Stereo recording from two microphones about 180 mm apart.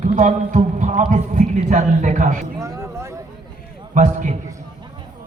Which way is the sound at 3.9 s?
45° right (ahead or behind).